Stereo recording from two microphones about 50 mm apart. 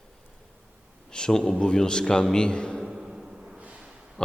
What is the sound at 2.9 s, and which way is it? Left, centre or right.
Timpani, centre.